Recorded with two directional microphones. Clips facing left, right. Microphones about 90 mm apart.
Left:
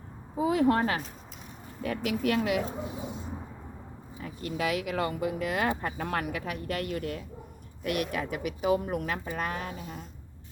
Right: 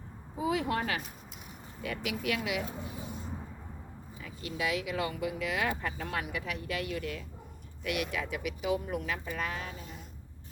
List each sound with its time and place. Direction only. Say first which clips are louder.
0.3 s speech: left 6 dB; 45° left (ahead or behind)
2.0 s speech: left 6 dB; 45° left (ahead or behind)
2.6 s speech: left 5 dB; 25° left (ahead or behind)
4.2 s speech: left 4 dB; 45° left (ahead or behind)